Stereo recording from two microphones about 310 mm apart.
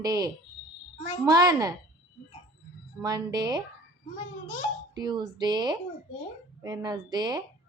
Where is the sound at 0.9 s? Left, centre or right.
Left.